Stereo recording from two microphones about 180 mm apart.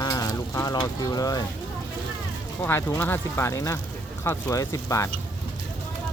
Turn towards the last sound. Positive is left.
turn(degrees=15)  # may be behind; listen again after turning